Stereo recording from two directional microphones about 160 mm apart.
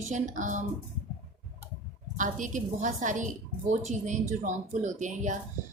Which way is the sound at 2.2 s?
50° right (ahead or behind).